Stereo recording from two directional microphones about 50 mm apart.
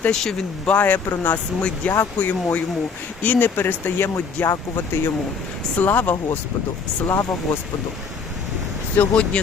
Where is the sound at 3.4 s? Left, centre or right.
Left.